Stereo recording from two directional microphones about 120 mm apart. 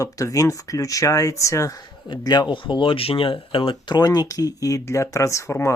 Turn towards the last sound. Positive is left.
turn(degrees=25)  # may be behind; listen again after turning